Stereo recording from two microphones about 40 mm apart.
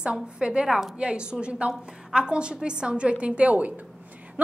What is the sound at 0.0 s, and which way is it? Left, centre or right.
A woman's voice, right.